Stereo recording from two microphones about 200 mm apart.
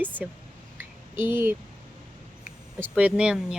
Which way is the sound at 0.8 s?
10° right (ahead or behind).